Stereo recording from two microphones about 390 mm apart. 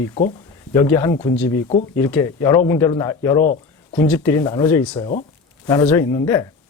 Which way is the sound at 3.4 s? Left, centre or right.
Left.